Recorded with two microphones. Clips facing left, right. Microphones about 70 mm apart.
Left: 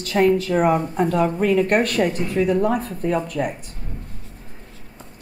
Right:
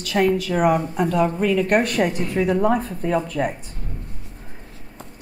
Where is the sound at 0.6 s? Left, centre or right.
Left.